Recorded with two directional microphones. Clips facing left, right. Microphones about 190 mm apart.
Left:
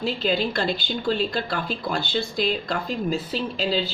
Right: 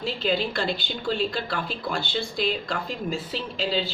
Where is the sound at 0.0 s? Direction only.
40° left (ahead or behind).